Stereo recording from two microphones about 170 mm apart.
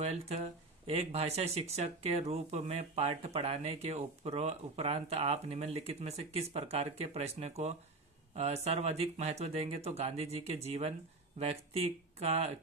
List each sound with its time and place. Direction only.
0.0 s speech: 40° right (ahead or behind)